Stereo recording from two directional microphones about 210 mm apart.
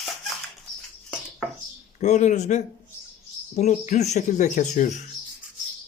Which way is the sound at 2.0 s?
35° left (ahead or behind).